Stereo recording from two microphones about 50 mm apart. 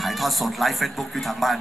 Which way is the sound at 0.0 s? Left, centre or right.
Centre.